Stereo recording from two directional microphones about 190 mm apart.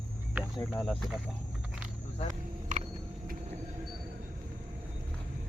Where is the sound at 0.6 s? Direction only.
5° left (ahead or behind).